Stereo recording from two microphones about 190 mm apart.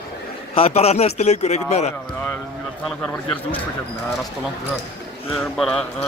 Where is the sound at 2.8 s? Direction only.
5° left (ahead or behind).